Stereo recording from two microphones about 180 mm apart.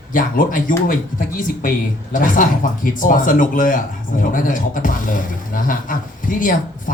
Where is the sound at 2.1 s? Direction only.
45° left (ahead or behind).